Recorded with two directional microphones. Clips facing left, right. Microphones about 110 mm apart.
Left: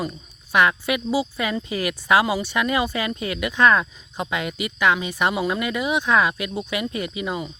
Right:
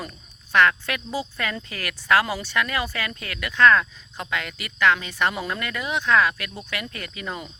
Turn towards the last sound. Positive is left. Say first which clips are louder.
# left 7 dB
turn(degrees=15)  # may be behind; listen again after turning